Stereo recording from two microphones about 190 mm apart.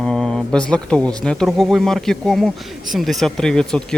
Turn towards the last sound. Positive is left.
turn(degrees=5)  # may be behind; listen again after turning